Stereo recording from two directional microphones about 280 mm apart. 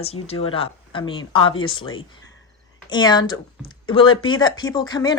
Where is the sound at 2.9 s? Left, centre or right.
Centre.